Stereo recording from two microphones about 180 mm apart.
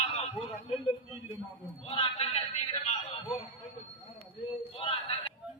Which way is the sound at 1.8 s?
35° left (ahead or behind).